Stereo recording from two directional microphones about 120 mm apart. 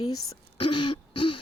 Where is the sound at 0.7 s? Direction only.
40° left (ahead or behind).